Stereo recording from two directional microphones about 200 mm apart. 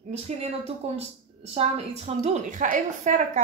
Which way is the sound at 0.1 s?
30° right (ahead or behind).